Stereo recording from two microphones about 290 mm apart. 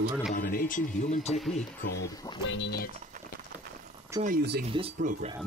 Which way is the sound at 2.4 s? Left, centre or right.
Left.